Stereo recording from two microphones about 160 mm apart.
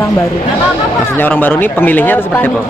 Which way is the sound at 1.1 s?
10° left (ahead or behind).